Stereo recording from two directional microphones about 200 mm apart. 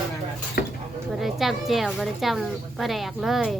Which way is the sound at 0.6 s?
55° left (ahead or behind).